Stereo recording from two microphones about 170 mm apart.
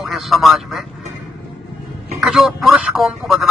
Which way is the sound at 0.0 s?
Centre (ahead or behind).